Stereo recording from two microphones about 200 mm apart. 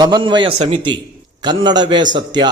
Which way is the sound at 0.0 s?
25° right (ahead or behind).